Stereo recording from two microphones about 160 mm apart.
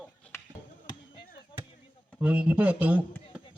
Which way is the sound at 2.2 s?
10° right (ahead or behind).